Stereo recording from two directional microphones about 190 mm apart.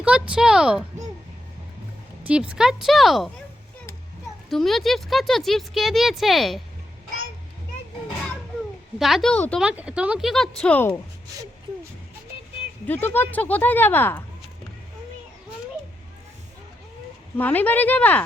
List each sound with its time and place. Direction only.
0.0 s speech: 5° right (ahead or behind)
2.2 s speech: 5° right (ahead or behind)
4.4 s speech: centre (ahead or behind)
9.0 s speech: centre (ahead or behind)
9.6 s speech: 5° right (ahead or behind); by 11.0 s 10° left (ahead or behind)
12.8 s speech: 10° left (ahead or behind)
17.3 s speech: 10° left (ahead or behind)